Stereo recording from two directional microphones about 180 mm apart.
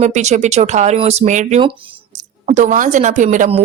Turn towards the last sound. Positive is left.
turn(degrees=-45)  # may be behind; listen again after turning